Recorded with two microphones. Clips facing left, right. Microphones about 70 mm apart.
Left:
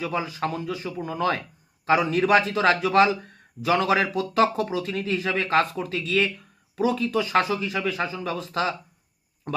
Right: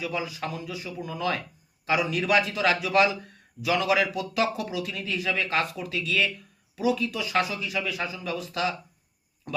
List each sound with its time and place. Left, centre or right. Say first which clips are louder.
0.0 s a man's voice: left 4 dB; left